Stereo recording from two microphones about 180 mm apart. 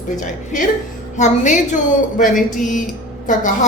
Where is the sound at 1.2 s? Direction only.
45° left (ahead or behind).